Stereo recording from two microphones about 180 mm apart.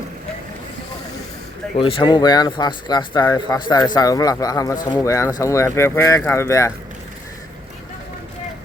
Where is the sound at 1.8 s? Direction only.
30° left (ahead or behind).